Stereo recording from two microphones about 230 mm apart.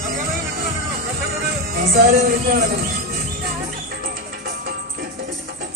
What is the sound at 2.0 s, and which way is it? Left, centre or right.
Speech, right.